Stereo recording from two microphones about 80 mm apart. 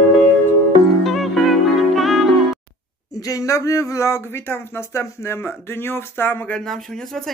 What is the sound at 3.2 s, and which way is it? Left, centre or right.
Speech, left.